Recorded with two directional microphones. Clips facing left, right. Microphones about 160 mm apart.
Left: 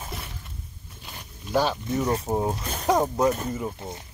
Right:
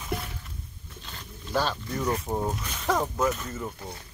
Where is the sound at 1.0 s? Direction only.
15° left (ahead or behind).